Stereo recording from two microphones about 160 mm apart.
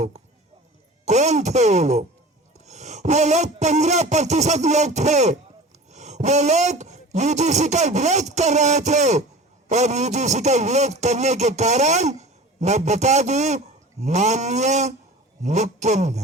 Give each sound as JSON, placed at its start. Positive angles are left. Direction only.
{"t": 1.0, "sound": "a man's voice", "side_deg": -45}